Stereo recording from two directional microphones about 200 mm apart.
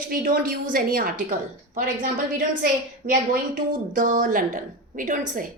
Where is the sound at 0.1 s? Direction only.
45° right (ahead or behind).